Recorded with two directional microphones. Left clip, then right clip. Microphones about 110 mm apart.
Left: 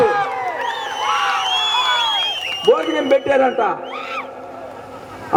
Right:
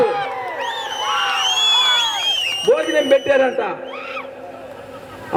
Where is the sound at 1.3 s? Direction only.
35° left (ahead or behind).